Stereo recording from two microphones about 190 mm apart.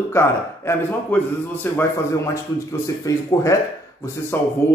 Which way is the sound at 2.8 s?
15° left (ahead or behind).